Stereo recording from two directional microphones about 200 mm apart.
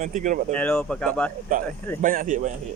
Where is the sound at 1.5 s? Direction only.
45° right (ahead or behind).